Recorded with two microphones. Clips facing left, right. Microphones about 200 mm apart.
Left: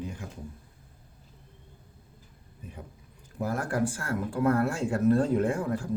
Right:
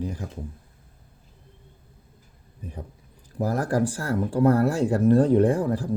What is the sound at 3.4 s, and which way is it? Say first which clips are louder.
Speech: right 5 dB; 40° right (ahead or behind).